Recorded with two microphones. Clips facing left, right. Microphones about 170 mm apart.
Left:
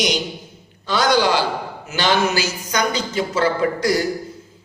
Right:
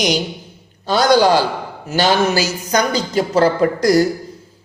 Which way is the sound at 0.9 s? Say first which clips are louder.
Right 5 dB; 40° right (ahead or behind).